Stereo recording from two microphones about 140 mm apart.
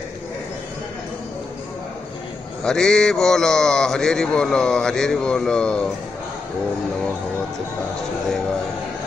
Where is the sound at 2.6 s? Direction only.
5° left (ahead or behind).